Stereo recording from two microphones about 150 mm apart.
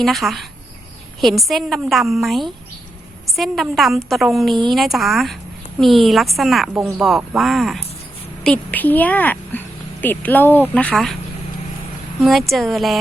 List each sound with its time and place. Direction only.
0.0 s speech: centre (ahead or behind)
8.4 s speech: 10° left (ahead or behind)
12.2 s speech: centre (ahead or behind)